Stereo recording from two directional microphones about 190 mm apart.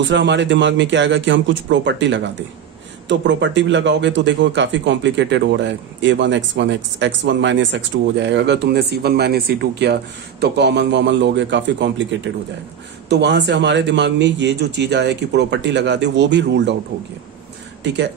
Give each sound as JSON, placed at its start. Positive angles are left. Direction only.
{"t": 0.0, "sound": "speech", "side_deg": -70}
{"t": 17.8, "sound": "speech", "side_deg": -65}